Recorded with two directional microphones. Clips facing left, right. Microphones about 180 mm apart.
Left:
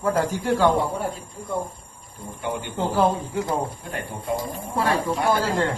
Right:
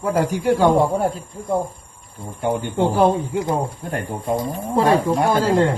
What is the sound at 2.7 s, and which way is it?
Speech, 20° right (ahead or behind).